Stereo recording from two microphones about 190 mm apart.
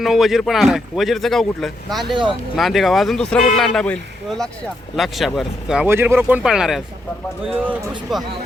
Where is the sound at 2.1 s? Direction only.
25° right (ahead or behind).